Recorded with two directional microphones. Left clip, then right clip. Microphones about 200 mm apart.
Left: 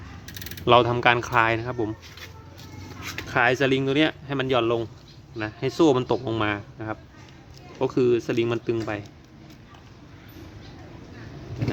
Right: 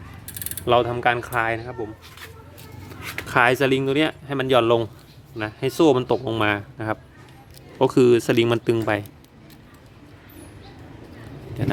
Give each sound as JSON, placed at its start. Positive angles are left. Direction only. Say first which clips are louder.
{"t": 0.6, "sound": "speech", "louder": "left 1 dB", "side_deg": 10}
{"t": 3.2, "sound": "speech", "louder": "right 3 dB", "side_deg": -15}
{"t": 5.4, "sound": "speech", "louder": "right 2 dB", "side_deg": -10}